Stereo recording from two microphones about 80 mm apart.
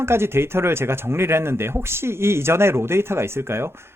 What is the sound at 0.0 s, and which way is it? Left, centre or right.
Speech, right.